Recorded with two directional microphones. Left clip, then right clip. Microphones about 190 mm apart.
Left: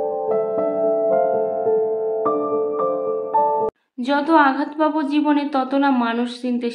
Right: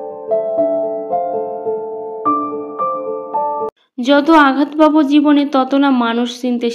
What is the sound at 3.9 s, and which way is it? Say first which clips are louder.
Speech: right 6 dB; 30° right (ahead or behind).